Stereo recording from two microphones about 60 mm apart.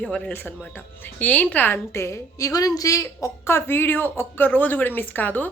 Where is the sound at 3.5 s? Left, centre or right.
Left.